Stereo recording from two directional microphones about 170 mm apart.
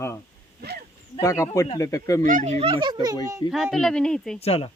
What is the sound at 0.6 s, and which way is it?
Speech, 70° right (ahead or behind).